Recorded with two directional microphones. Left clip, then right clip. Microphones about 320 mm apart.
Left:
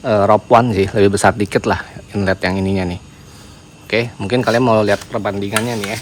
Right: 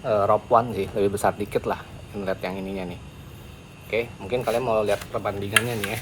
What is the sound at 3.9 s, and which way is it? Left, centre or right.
Speech, left.